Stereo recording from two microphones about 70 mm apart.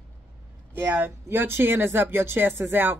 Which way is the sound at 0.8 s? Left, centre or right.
Right.